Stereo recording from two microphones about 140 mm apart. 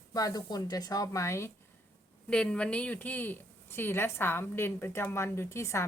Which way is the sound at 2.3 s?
5° left (ahead or behind).